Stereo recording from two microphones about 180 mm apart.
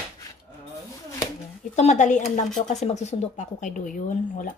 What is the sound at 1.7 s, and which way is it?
Speech, 40° left (ahead or behind).